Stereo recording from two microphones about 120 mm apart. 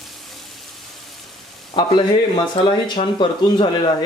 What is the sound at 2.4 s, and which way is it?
Speech, 40° left (ahead or behind).